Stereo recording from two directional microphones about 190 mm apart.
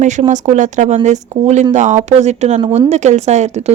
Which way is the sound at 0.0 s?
40° right (ahead or behind).